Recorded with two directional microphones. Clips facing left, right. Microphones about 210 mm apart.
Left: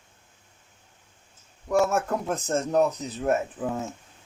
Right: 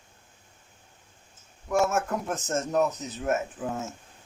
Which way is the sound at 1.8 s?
35° left (ahead or behind).